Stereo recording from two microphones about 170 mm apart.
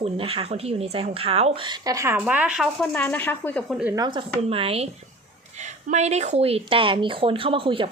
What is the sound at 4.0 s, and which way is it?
Speech, 30° right (ahead or behind).